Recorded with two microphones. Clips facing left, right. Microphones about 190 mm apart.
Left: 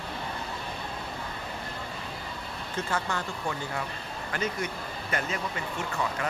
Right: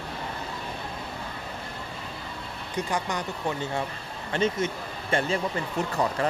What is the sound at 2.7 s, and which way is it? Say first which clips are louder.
Speech: right 2 dB; 15° right (ahead or behind).